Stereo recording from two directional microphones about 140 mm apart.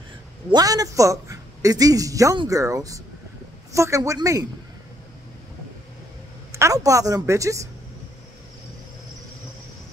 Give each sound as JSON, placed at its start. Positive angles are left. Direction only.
{"t": 0.5, "sound": "a woman's voice", "side_deg": -25}
{"t": 6.5, "sound": "a woman's voice", "side_deg": -25}